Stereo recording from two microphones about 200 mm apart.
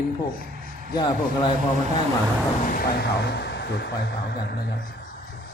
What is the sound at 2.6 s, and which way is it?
Speech, 50° left (ahead or behind).